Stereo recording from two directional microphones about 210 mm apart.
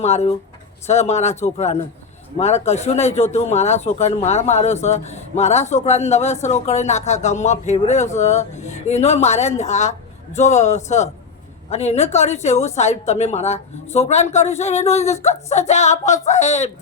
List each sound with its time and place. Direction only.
0.0 s speech: 30° left (ahead or behind)